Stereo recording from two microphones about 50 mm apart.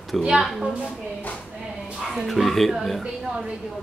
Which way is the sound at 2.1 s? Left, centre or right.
Centre.